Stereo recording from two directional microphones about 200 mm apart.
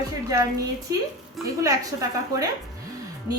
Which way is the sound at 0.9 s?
15° right (ahead or behind).